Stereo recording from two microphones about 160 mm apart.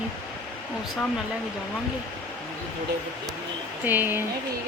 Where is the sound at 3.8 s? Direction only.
10° right (ahead or behind).